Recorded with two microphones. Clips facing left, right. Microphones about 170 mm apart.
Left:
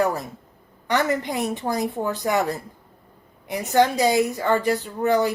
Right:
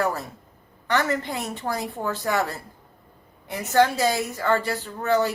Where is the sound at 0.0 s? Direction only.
15° left (ahead or behind).